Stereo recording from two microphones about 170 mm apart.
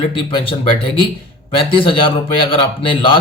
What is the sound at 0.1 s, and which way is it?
Speech, 30° left (ahead or behind).